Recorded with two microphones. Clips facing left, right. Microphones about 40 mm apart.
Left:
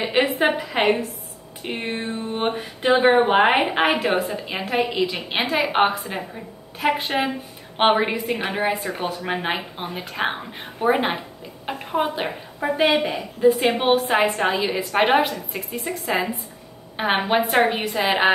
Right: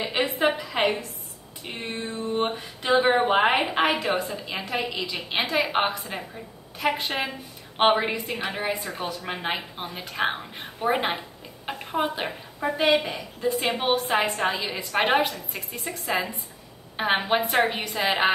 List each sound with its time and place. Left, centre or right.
0.0 s a woman's voice: left
0.7 s a sound: left
1.6 s a woman's voice: left
4.1 s speech: left
4.4 s a woman's voice: left
8.3 s a woman's voice: left
9.0 s a woman's voice: centre